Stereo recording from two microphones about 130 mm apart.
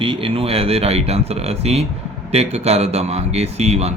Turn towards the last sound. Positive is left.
turn(degrees=-55)  # may be behind; listen again after turning